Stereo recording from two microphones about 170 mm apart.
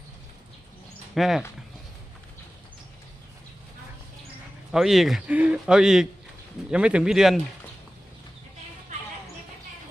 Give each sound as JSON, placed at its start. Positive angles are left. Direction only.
{"t": 1.1, "sound": "speech", "side_deg": 0}
{"t": 4.7, "sound": "speech", "side_deg": 0}